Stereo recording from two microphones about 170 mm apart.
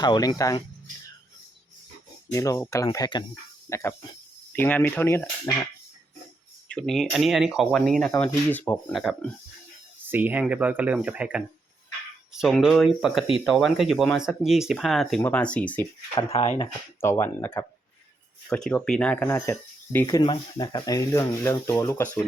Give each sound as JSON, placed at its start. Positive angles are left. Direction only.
{"t": 0.0, "sound": "speech", "side_deg": 25}
{"t": 2.3, "sound": "speech", "side_deg": 20}
{"t": 6.7, "sound": "speech", "side_deg": 5}
{"t": 10.1, "sound": "speech", "side_deg": -10}
{"t": 16.4, "sound": "speech", "side_deg": 35}
{"t": 17.0, "sound": "speech", "side_deg": 15}